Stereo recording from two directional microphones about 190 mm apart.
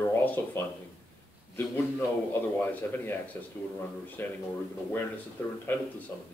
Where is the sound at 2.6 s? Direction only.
10° left (ahead or behind).